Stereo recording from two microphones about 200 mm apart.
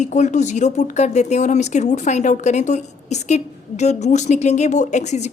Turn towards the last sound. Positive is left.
turn(degrees=35)  # may be behind; listen again after turning